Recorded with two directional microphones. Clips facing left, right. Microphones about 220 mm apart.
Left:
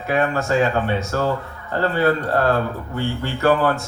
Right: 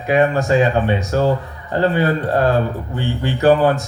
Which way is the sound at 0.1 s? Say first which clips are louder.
Right 5 dB; 15° right (ahead or behind).